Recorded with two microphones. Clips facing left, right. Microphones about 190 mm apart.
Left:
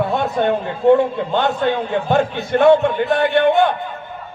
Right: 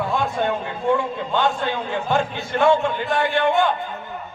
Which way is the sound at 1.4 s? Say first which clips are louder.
Left 4 dB; 60° left (ahead or behind).